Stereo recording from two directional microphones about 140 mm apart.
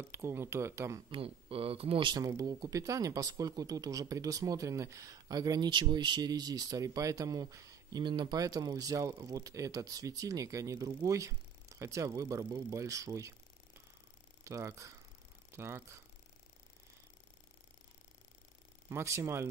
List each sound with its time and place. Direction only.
0.1 s speech: 20° right (ahead or behind)
1.1 s speech: 40° right (ahead or behind); by 13.3 s 25° right (ahead or behind)
14.4 s speech: 20° right (ahead or behind)
18.9 s speech: 20° right (ahead or behind)